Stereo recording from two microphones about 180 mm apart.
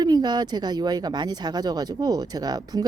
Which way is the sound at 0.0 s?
25° right (ahead or behind).